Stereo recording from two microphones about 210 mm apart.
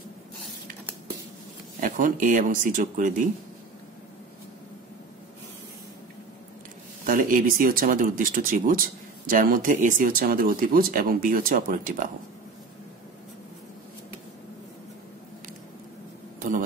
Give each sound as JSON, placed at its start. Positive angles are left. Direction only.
{"t": 1.8, "sound": "speech", "side_deg": -40}
{"t": 7.1, "sound": "speech", "side_deg": -40}
{"t": 16.3, "sound": "a sound", "side_deg": -40}